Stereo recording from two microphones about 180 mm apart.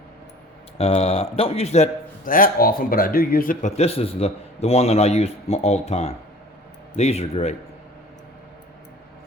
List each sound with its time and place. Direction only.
0.8 s a man's voice: 35° left (ahead or behind); by 3.7 s 50° left (ahead or behind)
3.8 s a man's voice: 35° left (ahead or behind)